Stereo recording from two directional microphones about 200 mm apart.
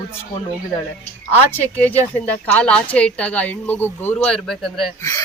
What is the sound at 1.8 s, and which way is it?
A woman's voice, 10° left (ahead or behind).